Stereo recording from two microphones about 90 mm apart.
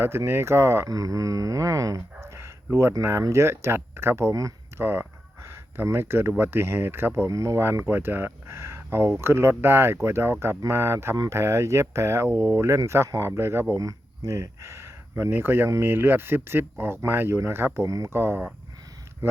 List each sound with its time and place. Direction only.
0.3 s speech: 30° right (ahead or behind)
4.8 s speech: 25° right (ahead or behind)
17.8 s speech: 40° right (ahead or behind)
18.1 s speech: 25° right (ahead or behind)